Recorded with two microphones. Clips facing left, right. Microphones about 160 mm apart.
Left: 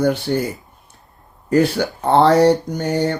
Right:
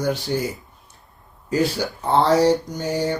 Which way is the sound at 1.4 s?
60° left (ahead or behind).